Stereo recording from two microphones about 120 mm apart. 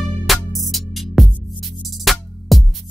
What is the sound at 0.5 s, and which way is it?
Music, centre (ahead or behind).